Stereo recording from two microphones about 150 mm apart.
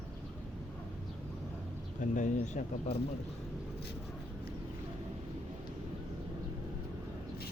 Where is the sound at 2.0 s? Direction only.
55° left (ahead or behind); by 3.0 s 75° left (ahead or behind).